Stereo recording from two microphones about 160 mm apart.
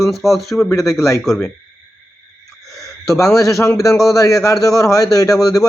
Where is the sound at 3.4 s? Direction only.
20° left (ahead or behind).